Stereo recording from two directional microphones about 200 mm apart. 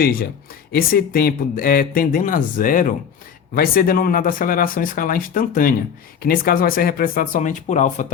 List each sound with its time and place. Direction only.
0.7 s speech: 50° left (ahead or behind)